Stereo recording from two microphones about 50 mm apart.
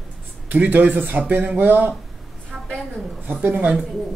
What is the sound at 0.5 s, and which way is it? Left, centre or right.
Speech, right.